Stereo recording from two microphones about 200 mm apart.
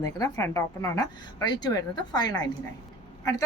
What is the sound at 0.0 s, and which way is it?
A woman's voice, 15° left (ahead or behind).